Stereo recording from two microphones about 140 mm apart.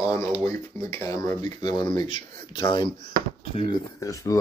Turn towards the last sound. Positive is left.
turn(degrees=25)  # may be behind; listen again after turning